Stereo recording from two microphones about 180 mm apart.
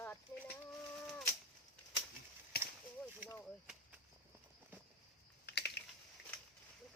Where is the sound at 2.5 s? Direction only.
60° left (ahead or behind).